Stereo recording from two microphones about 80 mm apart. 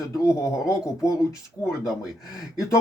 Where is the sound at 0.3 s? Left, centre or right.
Left.